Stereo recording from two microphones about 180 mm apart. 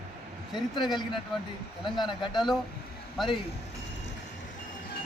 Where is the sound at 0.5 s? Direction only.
25° left (ahead or behind).